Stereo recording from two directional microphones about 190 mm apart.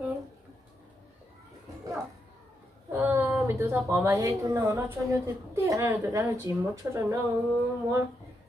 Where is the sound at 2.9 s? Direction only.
10° right (ahead or behind).